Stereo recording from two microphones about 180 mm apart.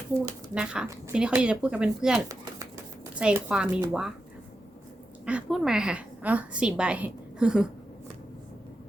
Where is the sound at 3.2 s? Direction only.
5° right (ahead or behind).